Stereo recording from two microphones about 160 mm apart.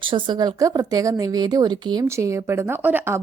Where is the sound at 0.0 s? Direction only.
30° right (ahead or behind).